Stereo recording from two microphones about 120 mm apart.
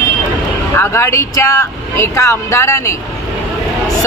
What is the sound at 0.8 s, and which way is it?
Speech, 20° left (ahead or behind).